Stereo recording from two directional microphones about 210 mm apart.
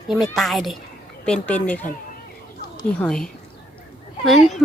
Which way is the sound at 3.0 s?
5° left (ahead or behind).